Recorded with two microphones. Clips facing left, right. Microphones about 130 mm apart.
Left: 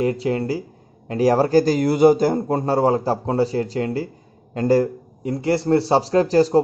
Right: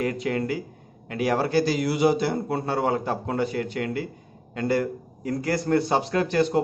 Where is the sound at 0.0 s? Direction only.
30° left (ahead or behind).